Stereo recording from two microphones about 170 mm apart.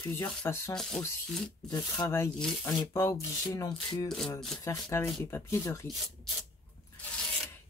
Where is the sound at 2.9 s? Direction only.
15° left (ahead or behind).